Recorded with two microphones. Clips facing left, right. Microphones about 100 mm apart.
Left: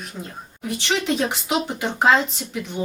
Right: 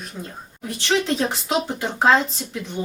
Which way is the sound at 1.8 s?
15° left (ahead or behind).